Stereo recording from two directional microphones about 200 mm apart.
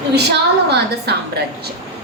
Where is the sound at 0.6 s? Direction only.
55° right (ahead or behind).